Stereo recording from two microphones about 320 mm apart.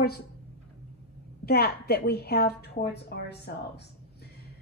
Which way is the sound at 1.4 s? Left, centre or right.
Left.